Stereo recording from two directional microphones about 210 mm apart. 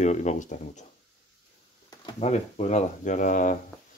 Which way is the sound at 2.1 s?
30° left (ahead or behind).